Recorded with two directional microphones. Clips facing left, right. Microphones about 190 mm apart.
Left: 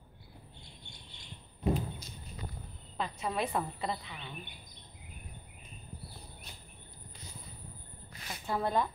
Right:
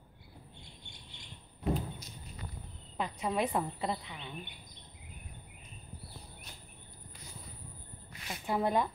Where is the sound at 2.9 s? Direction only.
15° right (ahead or behind).